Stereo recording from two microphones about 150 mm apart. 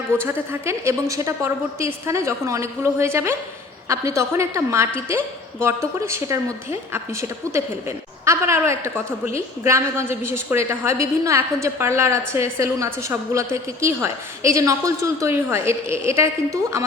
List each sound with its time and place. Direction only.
0.1 s a woman's voice: 15° right (ahead or behind)